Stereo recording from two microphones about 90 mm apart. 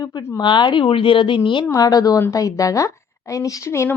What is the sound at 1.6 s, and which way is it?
A woman's voice, 40° left (ahead or behind).